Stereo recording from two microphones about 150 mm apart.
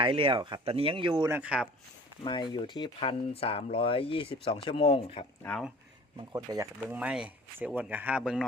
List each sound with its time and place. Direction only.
0.0 s speech: 35° right (ahead or behind)
1.3 s speech: 10° right (ahead or behind)
2.2 s speech: 30° left (ahead or behind)
5.4 s speech: 10° left (ahead or behind)
6.3 s speech: 25° right (ahead or behind)
6.8 s speech: 10° right (ahead or behind)